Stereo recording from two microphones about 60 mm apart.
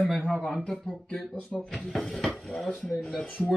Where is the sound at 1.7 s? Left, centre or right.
Centre.